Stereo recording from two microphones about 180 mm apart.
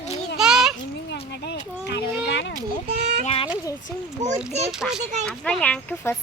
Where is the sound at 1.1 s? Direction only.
70° left (ahead or behind).